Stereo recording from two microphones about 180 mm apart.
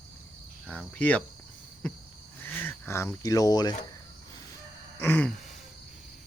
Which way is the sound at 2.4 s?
10° left (ahead or behind).